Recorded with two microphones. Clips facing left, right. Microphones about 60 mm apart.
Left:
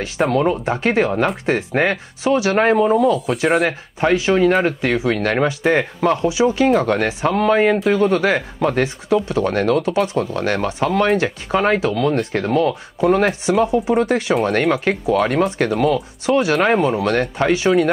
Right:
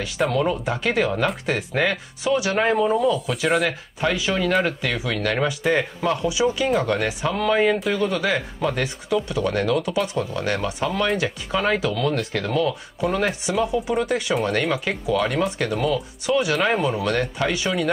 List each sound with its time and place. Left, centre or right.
0.3 s speech: left
4.0 s speech: left